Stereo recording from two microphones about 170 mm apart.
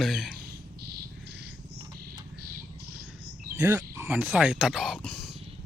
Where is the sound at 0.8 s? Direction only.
70° right (ahead or behind).